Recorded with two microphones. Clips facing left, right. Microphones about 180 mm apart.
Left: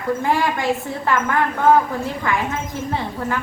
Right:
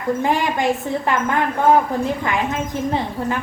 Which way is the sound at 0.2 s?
20° right (ahead or behind).